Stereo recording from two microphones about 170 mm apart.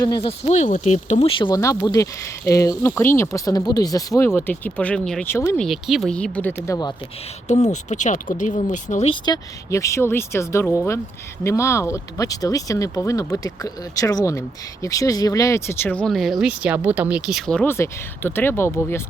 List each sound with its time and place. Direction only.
0.0 s speech: 25° left (ahead or behind)
0.3 s speech: 40° left (ahead or behind)
1.4 s speech: 25° left (ahead or behind)
5.5 s speech: centre (ahead or behind); by 6.9 s 20° left (ahead or behind)
7.4 s speech: 45° left (ahead or behind)
9.0 s speech: 25° left (ahead or behind)